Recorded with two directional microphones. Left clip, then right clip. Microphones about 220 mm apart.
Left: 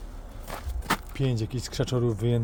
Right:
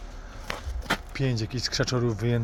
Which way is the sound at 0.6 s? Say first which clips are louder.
Left 2 dB; 15° left (ahead or behind).